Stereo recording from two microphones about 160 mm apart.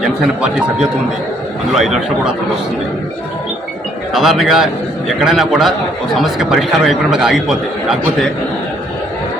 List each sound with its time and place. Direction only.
0.0 s speech: 5° right (ahead or behind)
4.1 s speech: centre (ahead or behind)